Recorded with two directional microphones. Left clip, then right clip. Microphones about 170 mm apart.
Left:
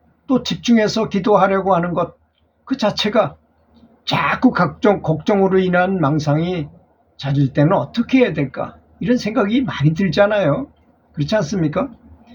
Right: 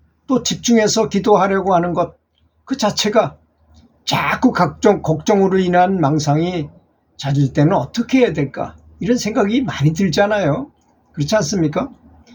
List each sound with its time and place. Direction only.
0.3 s speech: 10° right (ahead or behind)